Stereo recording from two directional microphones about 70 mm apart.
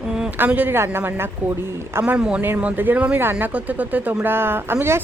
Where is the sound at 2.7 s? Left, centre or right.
Right.